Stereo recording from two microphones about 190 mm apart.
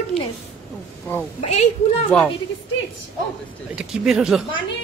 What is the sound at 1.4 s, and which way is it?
Speech, 35° left (ahead or behind).